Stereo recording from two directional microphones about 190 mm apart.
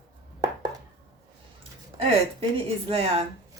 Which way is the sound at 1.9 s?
20° right (ahead or behind).